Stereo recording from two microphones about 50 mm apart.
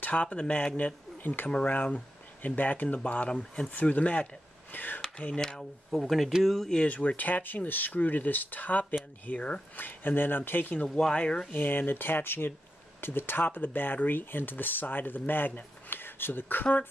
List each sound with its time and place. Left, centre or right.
0.0 s speech: left
5.2 s speech: centre
5.9 s speech: centre
6.9 s speech: left
11.0 s speech: centre
11.5 s speech: left